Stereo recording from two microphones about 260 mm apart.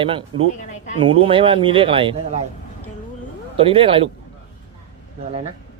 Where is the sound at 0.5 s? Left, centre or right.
Left.